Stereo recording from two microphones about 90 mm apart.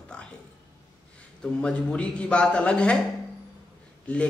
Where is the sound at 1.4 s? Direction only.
10° left (ahead or behind).